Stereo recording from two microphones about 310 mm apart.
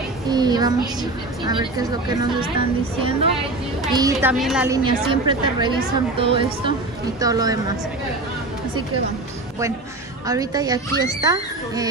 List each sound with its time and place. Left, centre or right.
0.3 s a woman's voice: centre
3.9 s a woman's voice: centre
4.8 s a woman's voice: centre
10.2 s a woman's voice: centre